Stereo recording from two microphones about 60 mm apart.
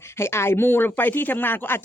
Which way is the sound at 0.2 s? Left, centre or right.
Left.